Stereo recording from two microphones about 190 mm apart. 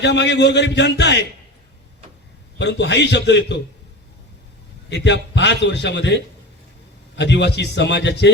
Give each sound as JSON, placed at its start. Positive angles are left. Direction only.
{"t": 0.0, "sound": "a man's voice", "side_deg": 65}
{"t": 2.6, "sound": "a man's voice", "side_deg": 65}
{"t": 4.9, "sound": "a man's voice", "side_deg": 65}